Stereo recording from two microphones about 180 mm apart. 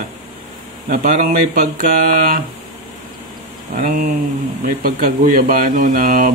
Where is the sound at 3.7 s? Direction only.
50° right (ahead or behind).